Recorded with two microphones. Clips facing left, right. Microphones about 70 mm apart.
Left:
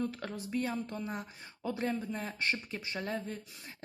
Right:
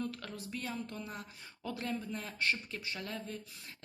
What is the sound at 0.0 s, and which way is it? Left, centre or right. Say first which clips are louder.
Speech: left 4 dB; left.